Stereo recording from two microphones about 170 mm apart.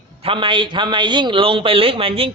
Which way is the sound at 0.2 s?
30° right (ahead or behind).